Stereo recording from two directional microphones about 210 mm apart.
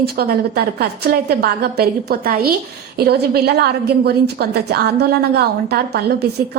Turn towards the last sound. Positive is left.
turn(degrees=-50)  # may be behind; listen again after turning